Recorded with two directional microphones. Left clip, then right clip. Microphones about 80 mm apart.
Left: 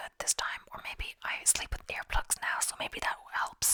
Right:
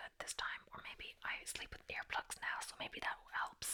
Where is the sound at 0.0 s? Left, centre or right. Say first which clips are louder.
Left 10 dB; left.